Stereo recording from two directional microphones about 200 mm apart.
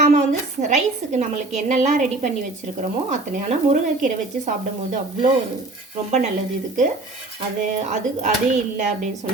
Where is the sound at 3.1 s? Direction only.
35° right (ahead or behind).